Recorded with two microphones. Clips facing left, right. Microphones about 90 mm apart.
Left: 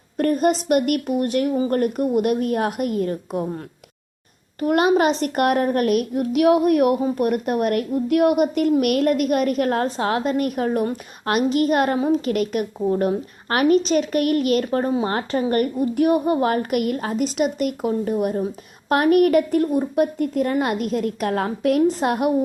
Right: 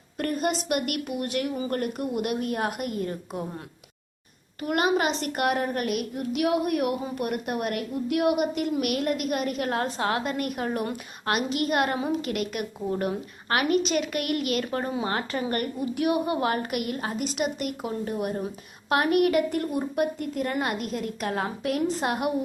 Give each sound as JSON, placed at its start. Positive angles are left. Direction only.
{"t": 0.2, "sound": "a child's voice", "side_deg": 45}
{"t": 4.6, "sound": "a child's voice", "side_deg": 40}